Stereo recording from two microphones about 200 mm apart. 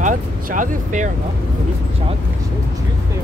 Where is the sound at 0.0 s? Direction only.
40° right (ahead or behind).